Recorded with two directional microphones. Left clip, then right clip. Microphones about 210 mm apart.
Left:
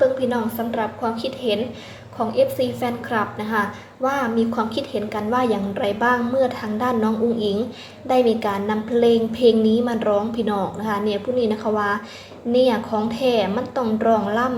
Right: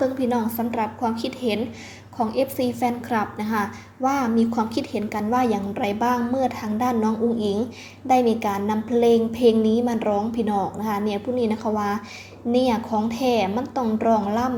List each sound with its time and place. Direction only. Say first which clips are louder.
0.0 s a woman's voice: left 4 dB; 30° right (ahead or behind)